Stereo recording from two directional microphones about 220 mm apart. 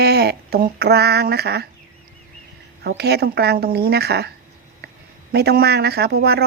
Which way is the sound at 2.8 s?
45° right (ahead or behind).